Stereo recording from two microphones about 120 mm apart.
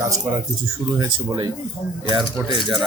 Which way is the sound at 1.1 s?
45° right (ahead or behind).